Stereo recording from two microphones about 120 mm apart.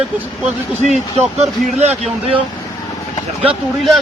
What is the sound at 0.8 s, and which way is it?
Speech, 65° right (ahead or behind).